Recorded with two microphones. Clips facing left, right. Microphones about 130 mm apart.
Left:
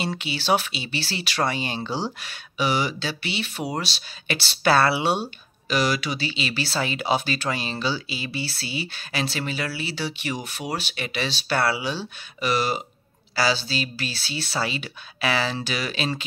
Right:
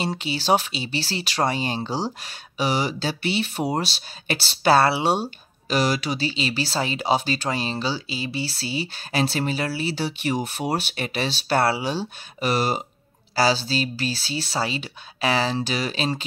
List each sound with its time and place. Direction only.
0.2 s speech: 35° right (ahead or behind)